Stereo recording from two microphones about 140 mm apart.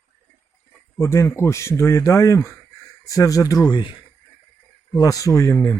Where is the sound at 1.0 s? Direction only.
20° left (ahead or behind).